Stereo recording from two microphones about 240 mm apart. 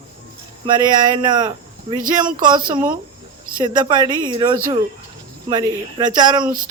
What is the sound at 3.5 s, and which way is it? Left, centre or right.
A man's voice, centre.